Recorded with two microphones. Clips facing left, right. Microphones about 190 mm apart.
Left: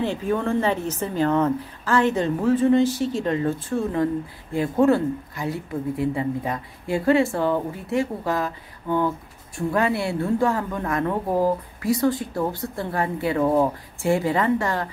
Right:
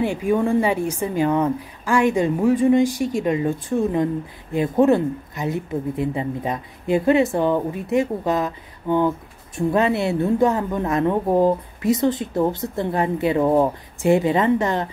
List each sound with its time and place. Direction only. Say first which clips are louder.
0.0 s a woman's voice: right 4 dB; 10° right (ahead or behind)